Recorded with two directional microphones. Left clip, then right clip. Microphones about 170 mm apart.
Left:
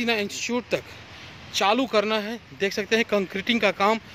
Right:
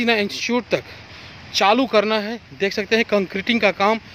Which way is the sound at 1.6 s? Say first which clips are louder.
Right 5 dB; 30° right (ahead or behind).